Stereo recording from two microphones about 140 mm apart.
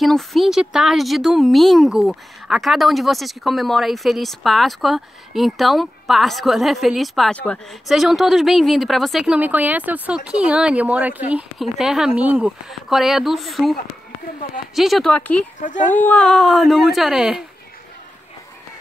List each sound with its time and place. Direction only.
0.0 s speech: centre (ahead or behind)
14.8 s speech: centre (ahead or behind)
15.1 s speech: 10° left (ahead or behind)
15.6 s speech: 65° left (ahead or behind)
16.0 s speech: 10° left (ahead or behind)